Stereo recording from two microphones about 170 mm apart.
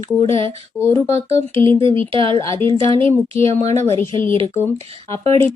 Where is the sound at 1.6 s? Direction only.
30° right (ahead or behind).